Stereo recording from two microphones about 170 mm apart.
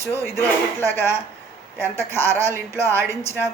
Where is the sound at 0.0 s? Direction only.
15° left (ahead or behind).